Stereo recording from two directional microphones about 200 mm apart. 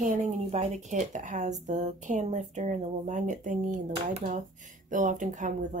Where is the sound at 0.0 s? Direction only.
35° right (ahead or behind).